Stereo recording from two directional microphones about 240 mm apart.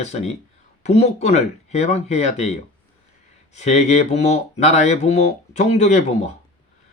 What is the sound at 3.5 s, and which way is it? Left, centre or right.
Speech, left.